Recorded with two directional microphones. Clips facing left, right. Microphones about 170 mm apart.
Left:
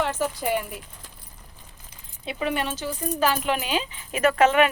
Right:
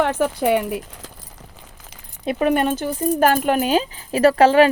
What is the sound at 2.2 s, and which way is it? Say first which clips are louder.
Speech: right 9 dB; 50° right (ahead or behind).